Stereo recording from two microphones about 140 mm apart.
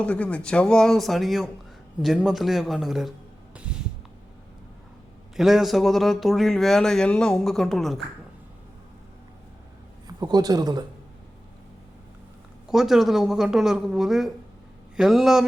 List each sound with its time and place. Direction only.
0.0 s speech: 10° left (ahead or behind)
3.7 s a sound: 10° right (ahead or behind)
5.4 s speech: centre (ahead or behind)
10.2 s a man's voice: 30° right (ahead or behind)
12.6 s speech: centre (ahead or behind)